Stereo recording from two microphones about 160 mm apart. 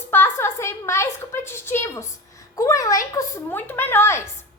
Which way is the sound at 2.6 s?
20° left (ahead or behind).